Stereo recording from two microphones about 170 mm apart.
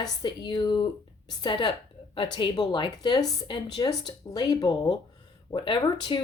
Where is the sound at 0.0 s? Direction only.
25° left (ahead or behind).